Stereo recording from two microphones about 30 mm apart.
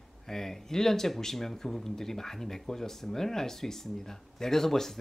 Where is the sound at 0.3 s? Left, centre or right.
Centre.